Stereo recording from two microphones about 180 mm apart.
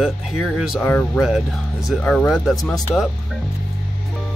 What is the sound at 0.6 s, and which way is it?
Speech, centre (ahead or behind).